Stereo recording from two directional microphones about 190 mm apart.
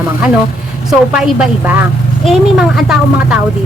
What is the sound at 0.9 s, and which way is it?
A woman's voice, 5° right (ahead or behind).